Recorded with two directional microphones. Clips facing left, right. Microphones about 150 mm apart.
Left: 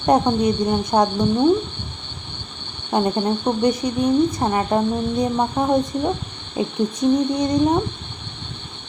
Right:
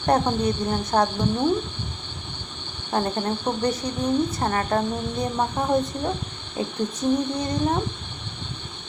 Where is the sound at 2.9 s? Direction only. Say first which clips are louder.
Left 5 dB; 20° left (ahead or behind).